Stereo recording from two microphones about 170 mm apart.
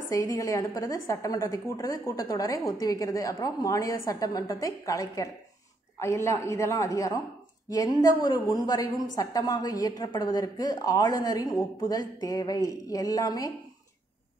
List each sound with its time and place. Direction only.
0.1 s a woman's voice: 20° left (ahead or behind)